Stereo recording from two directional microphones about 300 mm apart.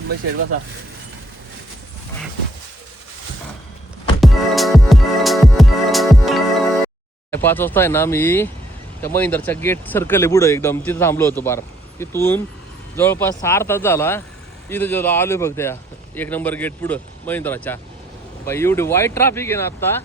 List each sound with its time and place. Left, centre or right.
4.2 s music: centre
7.3 s speech: centre